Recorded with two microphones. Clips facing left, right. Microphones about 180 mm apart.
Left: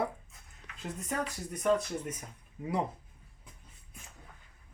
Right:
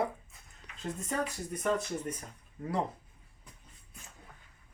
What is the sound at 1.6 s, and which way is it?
Speech, centre (ahead or behind).